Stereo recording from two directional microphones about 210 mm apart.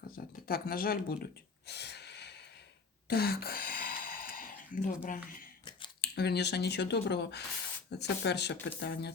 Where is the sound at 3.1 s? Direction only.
50° left (ahead or behind).